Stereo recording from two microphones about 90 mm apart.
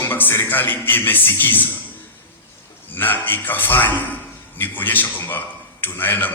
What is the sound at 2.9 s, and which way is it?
A man's voice, 20° left (ahead or behind).